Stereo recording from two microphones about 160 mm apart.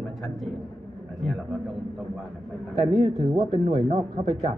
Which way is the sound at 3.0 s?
30° right (ahead or behind).